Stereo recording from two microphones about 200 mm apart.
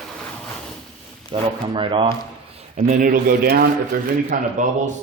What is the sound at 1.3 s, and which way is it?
Speech, 25° right (ahead or behind).